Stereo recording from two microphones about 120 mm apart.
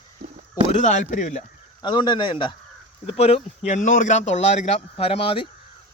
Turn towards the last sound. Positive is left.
turn(degrees=50)  # may be behind; listen again after turning